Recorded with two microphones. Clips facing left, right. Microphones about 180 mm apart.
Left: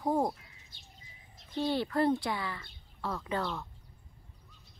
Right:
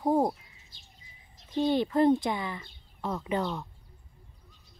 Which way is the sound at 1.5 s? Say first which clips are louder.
Right 5 dB; 20° right (ahead or behind).